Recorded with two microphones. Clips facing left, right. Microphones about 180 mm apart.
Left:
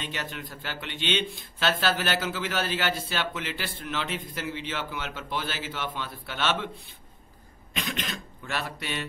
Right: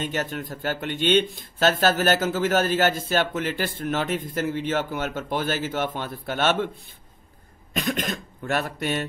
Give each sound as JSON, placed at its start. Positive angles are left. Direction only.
{"t": 0.0, "sound": "speech", "side_deg": -45}